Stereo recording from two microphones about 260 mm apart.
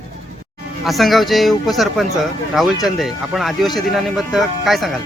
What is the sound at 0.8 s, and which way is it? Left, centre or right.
Speech, centre.